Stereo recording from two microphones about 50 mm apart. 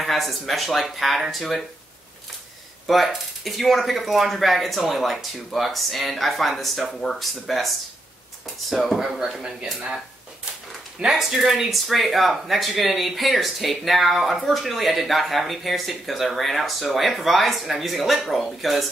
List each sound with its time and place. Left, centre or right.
0.0 s speech: centre
2.9 s speech: centre
9.2 s speech: centre
11.1 s speech: centre